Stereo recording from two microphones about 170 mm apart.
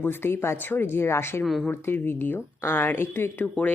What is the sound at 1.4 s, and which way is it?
Speech, centre (ahead or behind).